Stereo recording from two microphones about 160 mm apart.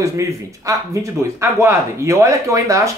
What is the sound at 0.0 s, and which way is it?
Speech, 20° right (ahead or behind).